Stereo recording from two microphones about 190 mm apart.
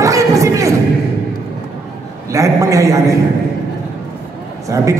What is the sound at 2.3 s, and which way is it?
Speech, 15° right (ahead or behind).